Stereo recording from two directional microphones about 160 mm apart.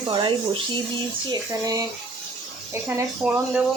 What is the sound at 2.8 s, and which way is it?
Speech, 10° right (ahead or behind).